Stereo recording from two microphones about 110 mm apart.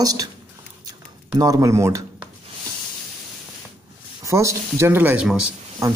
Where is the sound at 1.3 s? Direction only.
35° right (ahead or behind).